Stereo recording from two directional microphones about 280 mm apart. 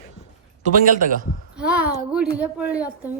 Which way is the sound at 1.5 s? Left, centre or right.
Centre.